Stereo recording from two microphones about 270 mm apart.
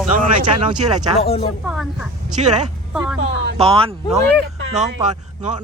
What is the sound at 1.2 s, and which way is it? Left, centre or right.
Speech, left.